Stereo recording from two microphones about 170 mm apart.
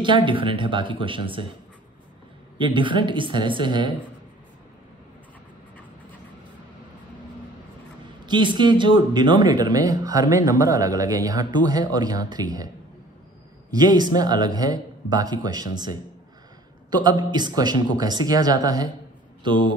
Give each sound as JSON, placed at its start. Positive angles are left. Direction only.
{"t": 0.0, "sound": "speech", "side_deg": -30}
{"t": 2.5, "sound": "speech", "side_deg": -30}
{"t": 8.3, "sound": "speech", "side_deg": -25}